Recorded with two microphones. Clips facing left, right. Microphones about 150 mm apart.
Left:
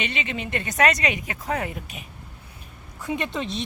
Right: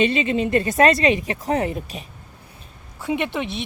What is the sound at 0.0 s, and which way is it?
Speech, 30° right (ahead or behind).